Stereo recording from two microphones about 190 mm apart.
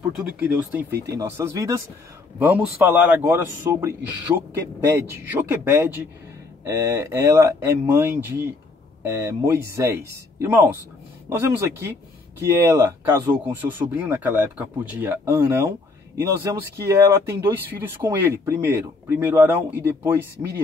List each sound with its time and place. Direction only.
0.6 s speech: 10° right (ahead or behind)
16.7 s speech: 15° right (ahead or behind)